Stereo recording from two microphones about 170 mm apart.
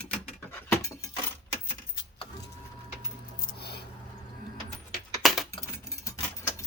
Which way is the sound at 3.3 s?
70° left (ahead or behind).